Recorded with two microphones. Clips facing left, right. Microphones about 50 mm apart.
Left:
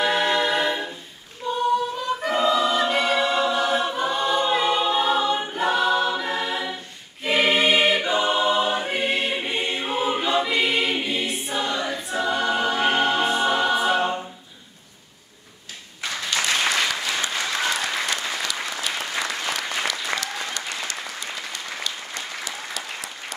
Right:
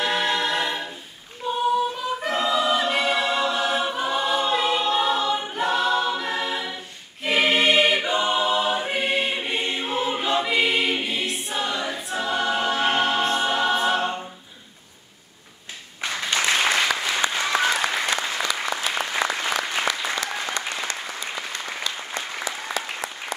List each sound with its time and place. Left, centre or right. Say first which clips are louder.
0.0 s a capella: left 2 dB; centre
1.4 s female singing: even; centre
2.1 s choir: left 3 dB; centre
16.3 s applause: right 1 dB; centre